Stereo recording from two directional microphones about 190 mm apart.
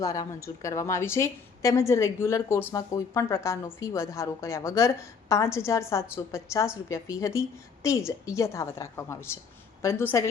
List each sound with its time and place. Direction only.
0.0 s a woman's voice: 20° left (ahead or behind)